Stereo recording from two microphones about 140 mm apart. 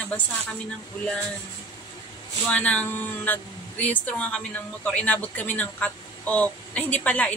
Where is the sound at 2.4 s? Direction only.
10° left (ahead or behind).